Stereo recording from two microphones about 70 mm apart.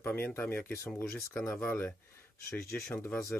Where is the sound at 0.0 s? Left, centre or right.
Left.